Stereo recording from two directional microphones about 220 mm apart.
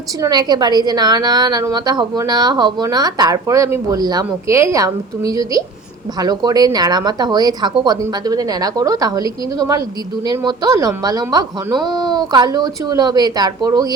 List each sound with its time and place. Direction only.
0.2 s a woman's voice: 20° right (ahead or behind)